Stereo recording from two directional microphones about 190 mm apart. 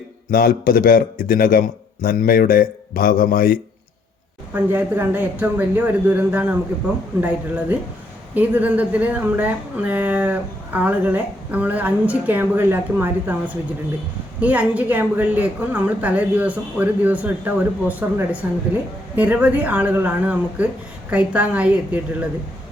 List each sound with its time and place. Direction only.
0.3 s a man's voice: 50° left (ahead or behind)
4.5 s speech: 10° right (ahead or behind)
14.4 s speech: 10° right (ahead or behind)